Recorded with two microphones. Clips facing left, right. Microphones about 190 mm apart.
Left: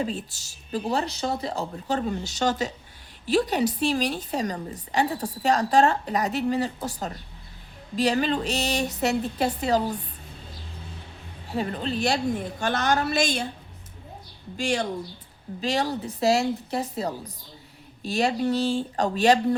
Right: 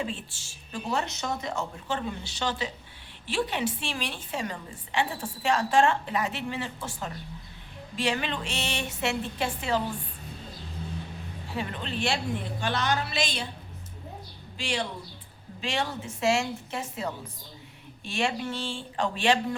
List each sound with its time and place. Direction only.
0.0 s a woman's voice: 40° left (ahead or behind)
11.4 s a woman's voice: 40° left (ahead or behind)
14.5 s a woman's voice: 45° left (ahead or behind)